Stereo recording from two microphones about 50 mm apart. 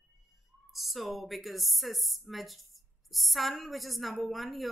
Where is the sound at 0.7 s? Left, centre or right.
Centre.